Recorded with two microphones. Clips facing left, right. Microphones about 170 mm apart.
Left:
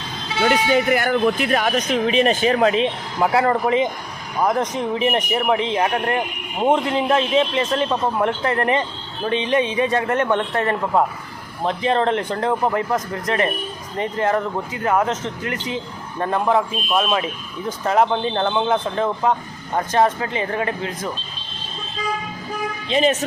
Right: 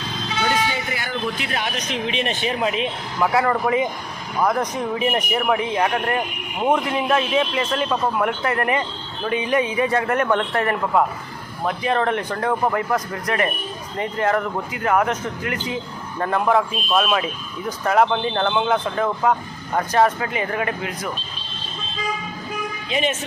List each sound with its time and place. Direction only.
0.9 s speech: 55° left (ahead or behind)
2.8 s a man's voice: 30° left (ahead or behind)
22.9 s speech: 35° left (ahead or behind)